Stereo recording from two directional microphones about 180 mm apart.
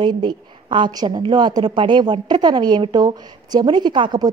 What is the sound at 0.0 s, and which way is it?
A woman's voice, 25° right (ahead or behind).